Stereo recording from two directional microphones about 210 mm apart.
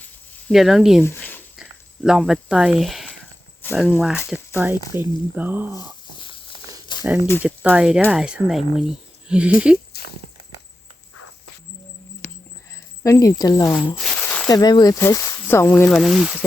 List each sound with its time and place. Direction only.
0.4 s speech: centre (ahead or behind)
1.0 s a sound: 10° left (ahead or behind)
1.5 s a sound: 5° right (ahead or behind)
3.6 s speech: 10° left (ahead or behind)
4.3 s speech: 10° right (ahead or behind)
6.1 s snake: 25° left (ahead or behind)
7.4 s speech: 5° right (ahead or behind)
9.9 s walk: 50° left (ahead or behind)
12.2 s a sound: 35° left (ahead or behind)
13.0 s speech: 15° left (ahead or behind)
13.9 s speech: centre (ahead or behind)
15.9 s speech: centre (ahead or behind)